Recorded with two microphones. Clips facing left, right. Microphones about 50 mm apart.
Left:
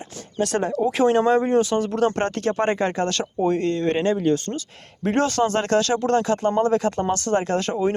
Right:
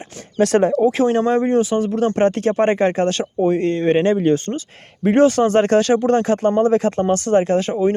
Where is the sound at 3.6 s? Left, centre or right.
Right.